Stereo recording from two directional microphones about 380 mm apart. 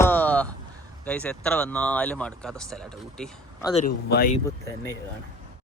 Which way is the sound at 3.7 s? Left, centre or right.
Centre.